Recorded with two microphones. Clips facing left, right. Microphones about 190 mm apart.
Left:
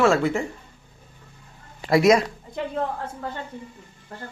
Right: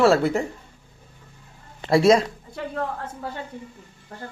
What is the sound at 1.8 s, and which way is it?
Speech, 30° right (ahead or behind).